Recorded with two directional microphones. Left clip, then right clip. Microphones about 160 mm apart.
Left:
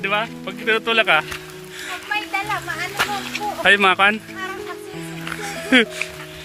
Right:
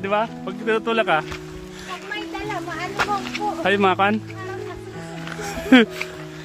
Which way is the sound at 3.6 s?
20° right (ahead or behind).